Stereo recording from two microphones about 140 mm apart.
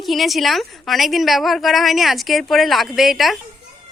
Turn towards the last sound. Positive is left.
turn(degrees=0)  # may be behind; listen again after turning